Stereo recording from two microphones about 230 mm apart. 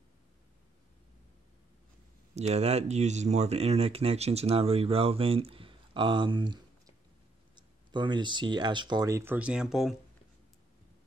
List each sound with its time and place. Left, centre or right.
2.3 s speech: right; by 9.9 s centre